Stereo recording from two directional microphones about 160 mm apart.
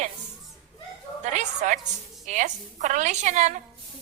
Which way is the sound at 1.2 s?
50° right (ahead or behind).